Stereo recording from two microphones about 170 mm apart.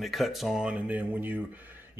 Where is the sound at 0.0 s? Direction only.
Centre (ahead or behind).